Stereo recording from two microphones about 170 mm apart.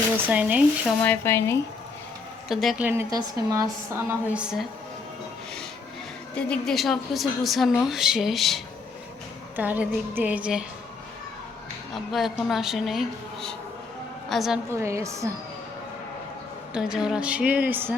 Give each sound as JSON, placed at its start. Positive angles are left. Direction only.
{"t": 0.3, "sound": "a woman's voice", "side_deg": -10}
{"t": 1.0, "sound": "speech", "side_deg": 10}
{"t": 2.5, "sound": "a woman's voice", "side_deg": 0}
{"t": 3.1, "sound": "speech", "side_deg": -20}
{"t": 4.3, "sound": "a woman's voice", "side_deg": -5}
{"t": 6.3, "sound": "a woman's voice", "side_deg": 5}
{"t": 9.6, "sound": "a woman's voice", "side_deg": -10}
{"t": 12.1, "sound": "a woman's voice", "side_deg": 0}
{"t": 14.7, "sound": "a woman's voice", "side_deg": -15}
{"t": 16.7, "sound": "a woman's voice", "side_deg": -5}